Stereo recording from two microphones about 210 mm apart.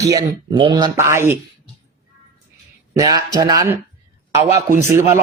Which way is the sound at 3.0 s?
20° right (ahead or behind).